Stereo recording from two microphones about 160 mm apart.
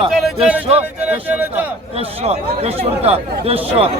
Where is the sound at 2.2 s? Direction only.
40° right (ahead or behind).